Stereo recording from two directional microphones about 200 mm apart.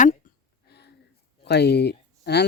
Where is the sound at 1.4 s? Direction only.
55° left (ahead or behind).